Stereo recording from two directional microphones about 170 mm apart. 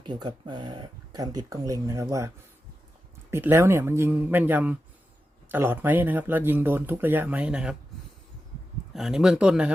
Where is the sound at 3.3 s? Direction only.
15° right (ahead or behind).